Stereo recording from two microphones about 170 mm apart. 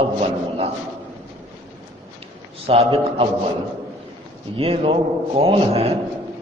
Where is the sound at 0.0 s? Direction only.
35° right (ahead or behind).